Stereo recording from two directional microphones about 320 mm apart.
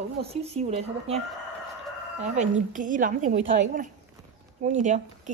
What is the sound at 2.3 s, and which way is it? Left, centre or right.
A woman's voice, right.